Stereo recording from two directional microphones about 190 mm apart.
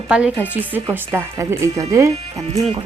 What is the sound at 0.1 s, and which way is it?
Speech, 5° right (ahead or behind).